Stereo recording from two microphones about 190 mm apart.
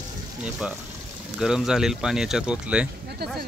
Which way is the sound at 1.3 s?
5° right (ahead or behind).